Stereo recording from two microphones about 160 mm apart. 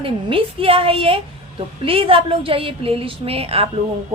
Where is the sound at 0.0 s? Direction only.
35° right (ahead or behind).